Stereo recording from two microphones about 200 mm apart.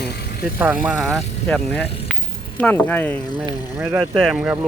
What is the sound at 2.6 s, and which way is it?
Speech, 5° left (ahead or behind).